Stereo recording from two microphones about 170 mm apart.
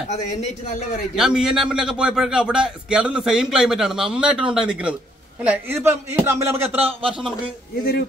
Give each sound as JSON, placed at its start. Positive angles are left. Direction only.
{"t": 0.1, "sound": "a man's voice", "side_deg": 40}
{"t": 1.1, "sound": "a man's voice", "side_deg": -5}